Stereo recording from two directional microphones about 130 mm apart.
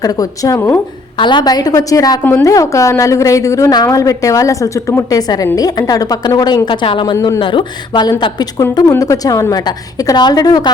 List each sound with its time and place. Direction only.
0.0 s a woman's voice: 25° left (ahead or behind)
1.1 s a woman's voice: 35° left (ahead or behind)